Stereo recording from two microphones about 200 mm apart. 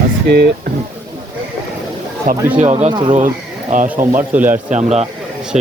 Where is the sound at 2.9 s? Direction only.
20° right (ahead or behind).